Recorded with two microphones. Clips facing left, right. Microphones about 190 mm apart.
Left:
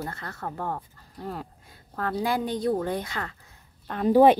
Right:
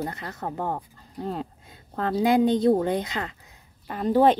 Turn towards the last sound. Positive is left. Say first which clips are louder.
# left 2 dB
turn(degrees=10)  # may be behind; listen again after turning